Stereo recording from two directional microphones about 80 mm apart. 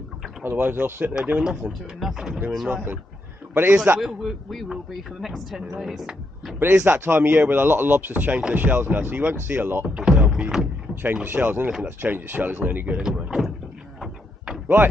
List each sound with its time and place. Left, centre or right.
0.4 s speech: right
1.1 s speech: centre
1.7 s a man's voice: centre
2.7 s speech: right
4.0 s a man's voice: centre
6.6 s speech: right
9.8 s speech: centre
11.2 s speech: right
12.9 s speech: centre
14.0 s a sound: centre